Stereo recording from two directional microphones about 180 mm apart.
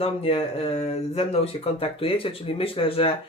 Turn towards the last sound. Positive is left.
turn(degrees=30)  # may be behind; listen again after turning